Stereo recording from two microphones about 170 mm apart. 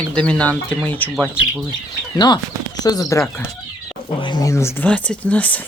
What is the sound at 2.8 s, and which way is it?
Speech, 20° left (ahead or behind).